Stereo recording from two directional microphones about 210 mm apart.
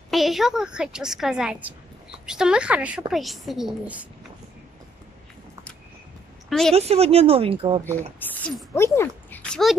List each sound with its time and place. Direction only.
0.1 s a woman's voice: centre (ahead or behind)
6.7 s a woman's voice: 30° right (ahead or behind)
7.8 s speech: 10° left (ahead or behind)